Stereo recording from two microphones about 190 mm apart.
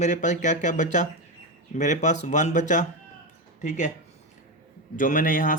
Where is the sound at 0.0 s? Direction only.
40° left (ahead or behind).